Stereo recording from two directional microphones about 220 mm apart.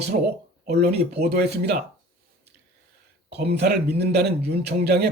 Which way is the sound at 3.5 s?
50° right (ahead or behind).